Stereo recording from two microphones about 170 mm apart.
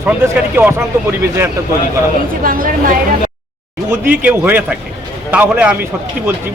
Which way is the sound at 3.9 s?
10° right (ahead or behind).